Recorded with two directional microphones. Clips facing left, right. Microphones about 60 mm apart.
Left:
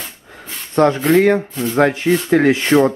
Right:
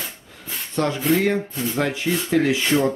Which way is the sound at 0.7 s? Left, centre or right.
Left.